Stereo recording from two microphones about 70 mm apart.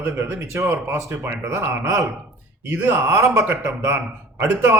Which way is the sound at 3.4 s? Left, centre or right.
Right.